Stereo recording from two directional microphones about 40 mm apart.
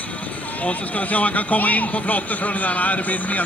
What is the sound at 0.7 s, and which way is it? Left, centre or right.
Speech, left.